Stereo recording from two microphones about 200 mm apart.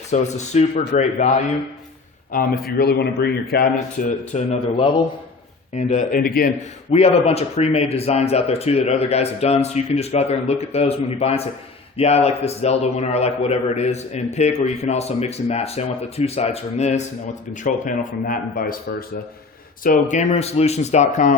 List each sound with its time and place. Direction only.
0.1 s a man's voice: 35° left (ahead or behind)
2.3 s a man's voice: 45° left (ahead or behind)
4.3 s a man's voice: 35° left (ahead or behind)
5.7 s a man's voice: 40° left (ahead or behind)
6.9 s a man's voice: 30° left (ahead or behind)